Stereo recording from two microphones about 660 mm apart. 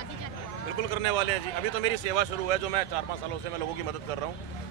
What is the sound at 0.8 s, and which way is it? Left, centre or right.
A man's voice, right.